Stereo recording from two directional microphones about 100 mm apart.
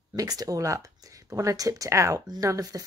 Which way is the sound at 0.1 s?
40° right (ahead or behind).